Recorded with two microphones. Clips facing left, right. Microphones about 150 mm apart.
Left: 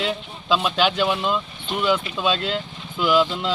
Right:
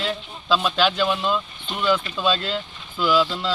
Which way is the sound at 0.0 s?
10° left (ahead or behind).